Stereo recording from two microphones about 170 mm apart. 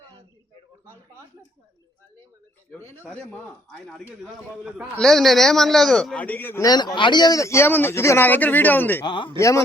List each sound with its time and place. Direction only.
2.7 s a man's voice: 10° left (ahead or behind)
9.0 s a man's voice: 30° left (ahead or behind)